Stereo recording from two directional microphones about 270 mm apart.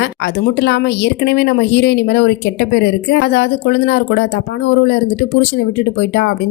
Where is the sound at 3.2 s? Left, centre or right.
Left.